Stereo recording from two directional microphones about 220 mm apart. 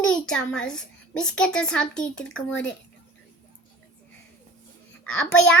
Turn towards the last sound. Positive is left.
turn(degrees=5)  # may be behind; listen again after turning